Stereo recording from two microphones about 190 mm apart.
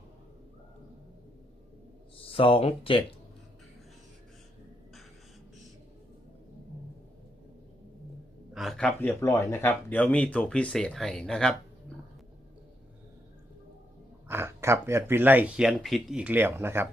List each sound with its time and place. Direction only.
2.2 s speech: 30° left (ahead or behind)
8.5 s speech: centre (ahead or behind)
14.3 s speech: 10° right (ahead or behind)